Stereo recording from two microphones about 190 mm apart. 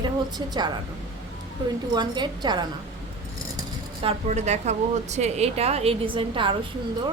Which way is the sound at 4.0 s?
35° right (ahead or behind).